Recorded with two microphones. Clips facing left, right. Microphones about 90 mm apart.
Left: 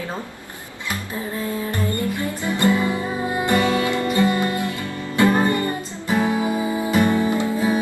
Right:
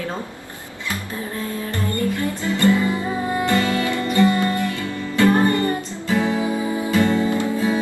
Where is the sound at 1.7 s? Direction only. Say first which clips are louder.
Right 1 dB; 20° left (ahead or behind).